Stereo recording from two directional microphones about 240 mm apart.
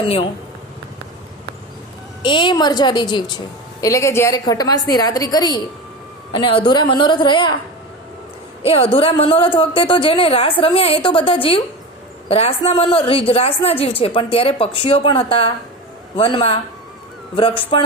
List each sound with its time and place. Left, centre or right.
0.0 s a woman's voice: left
2.2 s a woman's voice: centre
8.6 s a woman's voice: left